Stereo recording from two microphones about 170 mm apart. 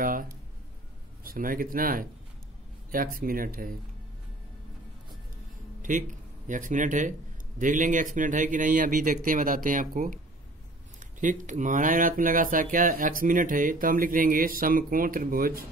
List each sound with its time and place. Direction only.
0.0 s speech: 55° right (ahead or behind)
5.8 s speech: 50° right (ahead or behind)
11.1 s speech: 45° right (ahead or behind)